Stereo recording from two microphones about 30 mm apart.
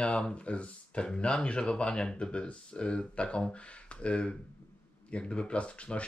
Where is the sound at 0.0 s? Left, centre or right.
Left.